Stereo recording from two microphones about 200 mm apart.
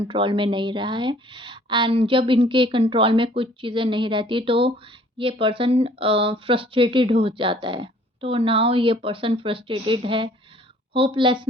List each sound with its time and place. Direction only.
0.1 s speech: 25° right (ahead or behind)